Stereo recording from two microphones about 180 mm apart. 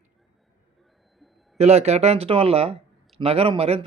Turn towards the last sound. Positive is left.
turn(degrees=-30)  # may be behind; listen again after turning